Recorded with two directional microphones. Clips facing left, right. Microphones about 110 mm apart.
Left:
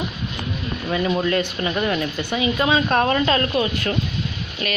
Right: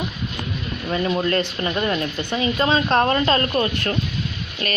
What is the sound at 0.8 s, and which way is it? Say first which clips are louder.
A woman's voice: even; 5° left (ahead or behind).